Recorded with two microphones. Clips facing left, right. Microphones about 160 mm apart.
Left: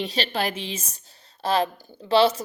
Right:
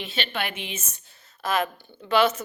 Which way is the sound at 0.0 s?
35° left (ahead or behind).